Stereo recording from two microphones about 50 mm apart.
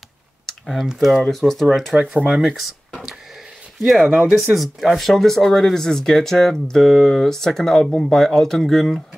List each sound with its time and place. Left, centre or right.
0.5 s computer keyboard: centre
0.9 s speech: centre
2.0 s speech: centre
3.8 s speech: centre
4.1 s speech: right
4.6 s speech: centre